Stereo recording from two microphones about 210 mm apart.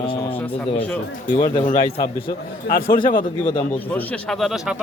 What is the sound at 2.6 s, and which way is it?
Speech, 45° left (ahead or behind).